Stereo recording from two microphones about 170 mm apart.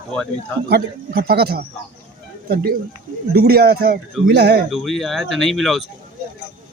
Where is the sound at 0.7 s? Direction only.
65° right (ahead or behind).